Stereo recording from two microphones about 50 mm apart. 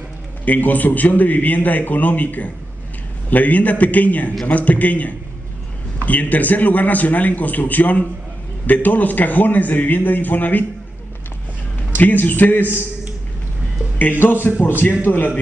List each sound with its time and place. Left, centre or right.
0.5 s a man's voice: left
12.0 s a man's voice: left
14.1 s a man's voice: left